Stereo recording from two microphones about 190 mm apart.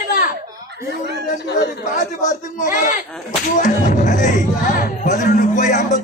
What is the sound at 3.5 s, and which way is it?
Music, 40° left (ahead or behind).